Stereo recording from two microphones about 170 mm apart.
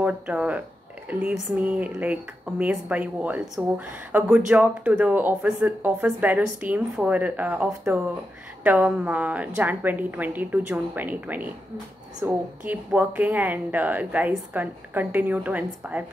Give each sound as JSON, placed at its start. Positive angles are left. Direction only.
{"t": 0.0, "sound": "speech", "side_deg": -10}